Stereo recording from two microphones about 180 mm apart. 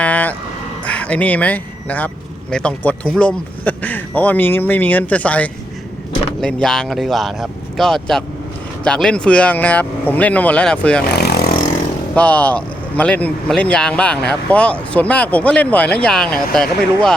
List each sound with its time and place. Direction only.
0.0 s vehicle: 10° left (ahead or behind)
0.9 s speech: 5° left (ahead or behind)
11.1 s vehicle: 65° left (ahead or behind)
12.1 s speech: 10° left (ahead or behind)